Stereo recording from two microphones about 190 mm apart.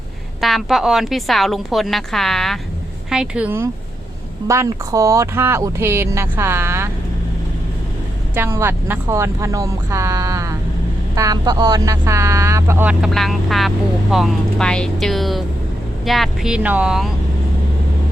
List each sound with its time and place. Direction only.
0.4 s a woman's voice: centre (ahead or behind)
8.4 s a woman's voice: 10° right (ahead or behind)